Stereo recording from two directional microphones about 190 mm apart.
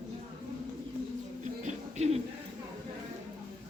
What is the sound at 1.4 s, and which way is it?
Music, 35° right (ahead or behind).